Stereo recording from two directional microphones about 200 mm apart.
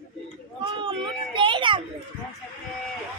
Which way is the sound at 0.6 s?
25° right (ahead or behind).